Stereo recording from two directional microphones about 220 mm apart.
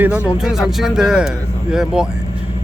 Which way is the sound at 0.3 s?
Centre (ahead or behind).